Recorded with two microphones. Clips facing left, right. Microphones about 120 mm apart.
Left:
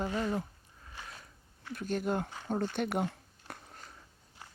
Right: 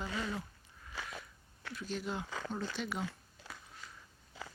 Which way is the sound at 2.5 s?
55° left (ahead or behind).